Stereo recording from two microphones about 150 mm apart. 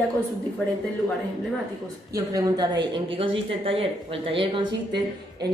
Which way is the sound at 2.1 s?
25° right (ahead or behind).